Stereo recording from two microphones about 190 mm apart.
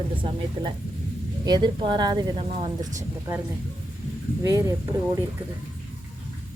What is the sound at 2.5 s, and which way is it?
Speech, 35° right (ahead or behind).